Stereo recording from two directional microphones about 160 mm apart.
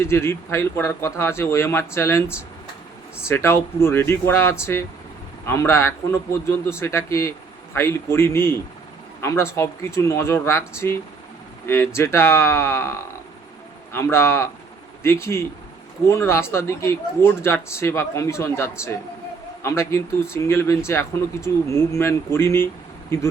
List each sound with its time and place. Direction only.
0.0 s speech: 15° left (ahead or behind)
13.9 s speech: 15° left (ahead or behind)